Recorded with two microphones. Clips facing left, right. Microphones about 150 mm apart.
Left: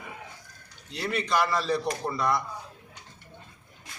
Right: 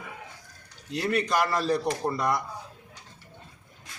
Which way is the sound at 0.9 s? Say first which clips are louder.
Right 2 dB; 45° right (ahead or behind).